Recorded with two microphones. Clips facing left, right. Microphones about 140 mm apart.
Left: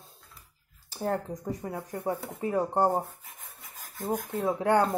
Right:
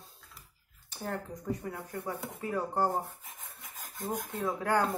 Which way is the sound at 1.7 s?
25° left (ahead or behind).